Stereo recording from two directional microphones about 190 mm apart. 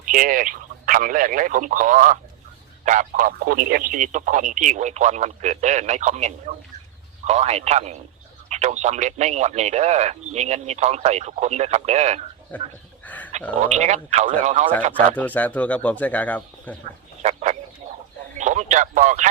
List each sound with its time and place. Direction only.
0.0 s speech: 45° right (ahead or behind)
13.1 s a sound: 10° left (ahead or behind)
13.6 s speech: 35° right (ahead or behind)
15.1 s speech: 10° left (ahead or behind)
17.2 s speech: 40° right (ahead or behind)